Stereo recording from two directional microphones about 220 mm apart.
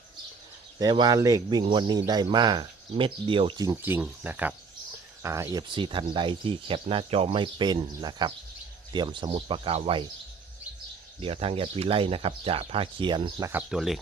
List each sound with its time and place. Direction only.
0.8 s speech: 20° right (ahead or behind)
11.2 s speech: 25° right (ahead or behind)
13.5 s speech: 5° right (ahead or behind)